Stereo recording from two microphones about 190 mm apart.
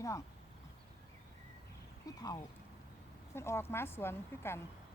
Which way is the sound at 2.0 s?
20° left (ahead or behind).